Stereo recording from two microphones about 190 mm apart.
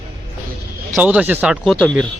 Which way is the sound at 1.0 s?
10° right (ahead or behind).